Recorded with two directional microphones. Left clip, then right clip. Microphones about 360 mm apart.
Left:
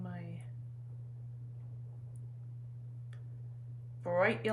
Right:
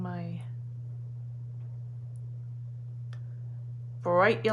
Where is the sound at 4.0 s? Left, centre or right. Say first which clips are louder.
Right 7 dB; centre.